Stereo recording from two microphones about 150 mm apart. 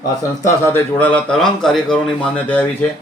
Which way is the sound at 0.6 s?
15° left (ahead or behind).